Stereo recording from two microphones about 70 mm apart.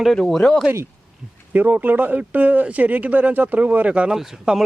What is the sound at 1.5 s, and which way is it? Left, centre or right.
Speech, right.